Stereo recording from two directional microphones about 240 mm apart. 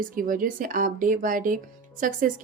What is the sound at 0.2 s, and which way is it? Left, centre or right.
A woman's voice, right.